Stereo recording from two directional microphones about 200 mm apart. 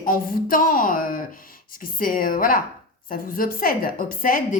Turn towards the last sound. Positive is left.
turn(degrees=45)  # may be behind; listen again after turning